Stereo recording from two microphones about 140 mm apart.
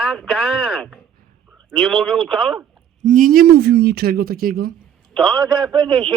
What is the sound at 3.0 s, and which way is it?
Speech, 70° right (ahead or behind).